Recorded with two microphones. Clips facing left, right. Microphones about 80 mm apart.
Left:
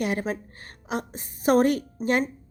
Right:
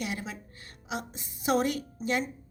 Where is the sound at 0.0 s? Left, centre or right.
Left.